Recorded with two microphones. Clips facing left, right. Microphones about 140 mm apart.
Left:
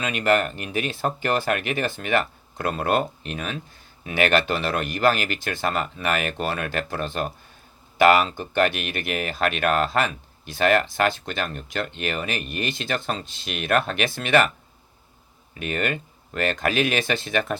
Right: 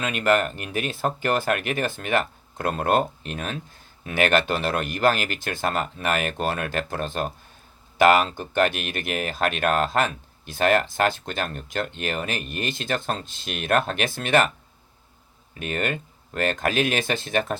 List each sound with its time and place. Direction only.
0.0 s speech: 50° right (ahead or behind)
15.5 s speech: 45° right (ahead or behind)